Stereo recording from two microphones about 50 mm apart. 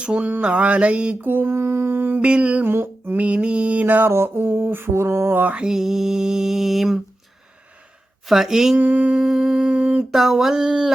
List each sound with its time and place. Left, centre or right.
0.0 s a sound: right
0.4 s mantra: right
1.2 s humming: right
1.5 s humming: right
2.2 s mantra: right
2.6 s mantra: right
3.2 s mantra: right
4.1 s humming: right
4.9 s music: right
5.5 s mantra: centre
8.3 s mantra: centre
8.8 s mantra: right
9.1 s mantra: centre; by 10.1 s right
10.1 s mantra: centre